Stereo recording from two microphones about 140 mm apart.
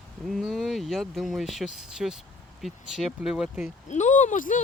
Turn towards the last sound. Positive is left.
turn(degrees=70)  # may be behind; listen again after turning